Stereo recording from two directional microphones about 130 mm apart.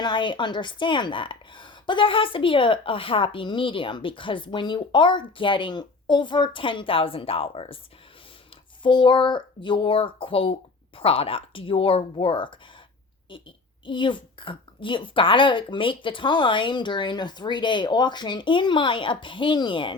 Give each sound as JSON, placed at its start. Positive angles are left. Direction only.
{"t": 0.0, "sound": "a woman's voice", "side_deg": 35}
{"t": 8.8, "sound": "speech", "side_deg": 40}
{"t": 13.8, "sound": "a woman's voice", "side_deg": 40}